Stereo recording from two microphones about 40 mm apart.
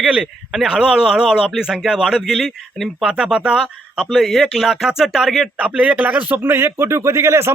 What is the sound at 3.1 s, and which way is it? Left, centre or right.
Speech, centre.